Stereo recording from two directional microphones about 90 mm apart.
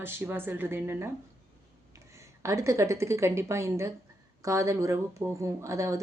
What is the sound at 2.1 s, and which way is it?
A woman's voice, 35° right (ahead or behind).